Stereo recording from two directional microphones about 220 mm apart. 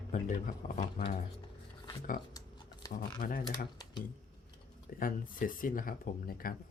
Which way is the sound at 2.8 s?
15° left (ahead or behind).